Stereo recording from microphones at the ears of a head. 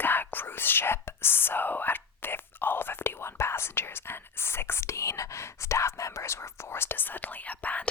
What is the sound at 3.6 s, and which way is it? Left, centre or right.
Whispering, left.